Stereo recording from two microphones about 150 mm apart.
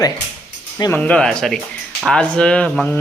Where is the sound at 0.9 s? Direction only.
10° left (ahead or behind).